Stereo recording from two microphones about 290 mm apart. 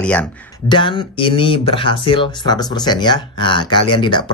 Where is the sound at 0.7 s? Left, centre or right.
Centre.